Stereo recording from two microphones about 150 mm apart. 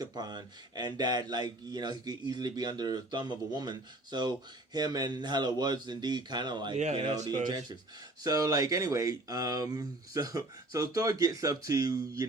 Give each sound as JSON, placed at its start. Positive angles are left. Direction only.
{"t": 0.0, "sound": "a man's voice", "side_deg": -30}